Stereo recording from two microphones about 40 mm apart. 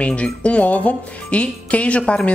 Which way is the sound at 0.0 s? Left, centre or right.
Left.